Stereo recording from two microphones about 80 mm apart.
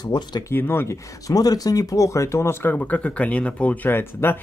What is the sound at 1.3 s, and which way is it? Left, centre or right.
Speech, left.